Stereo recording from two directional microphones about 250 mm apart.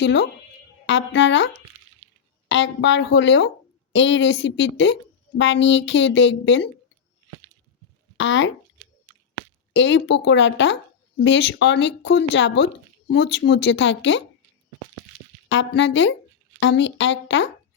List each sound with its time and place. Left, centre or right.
0.0 s speech: left
2.5 s speech: left
8.2 s speech: left
9.7 s speech: left
15.4 s speech: left